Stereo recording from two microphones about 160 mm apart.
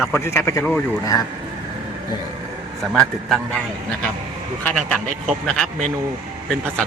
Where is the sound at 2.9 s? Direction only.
Centre (ahead or behind).